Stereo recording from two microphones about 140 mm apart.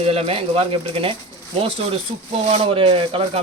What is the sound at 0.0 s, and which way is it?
Speech, 45° right (ahead or behind).